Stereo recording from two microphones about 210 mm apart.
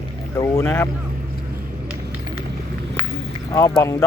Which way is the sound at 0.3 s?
15° left (ahead or behind).